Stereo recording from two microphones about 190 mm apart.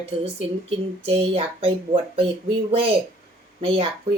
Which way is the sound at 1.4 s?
30° right (ahead or behind).